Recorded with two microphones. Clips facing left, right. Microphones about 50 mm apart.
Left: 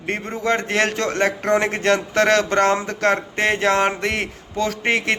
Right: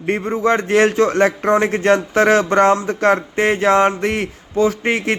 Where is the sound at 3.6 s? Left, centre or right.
Centre.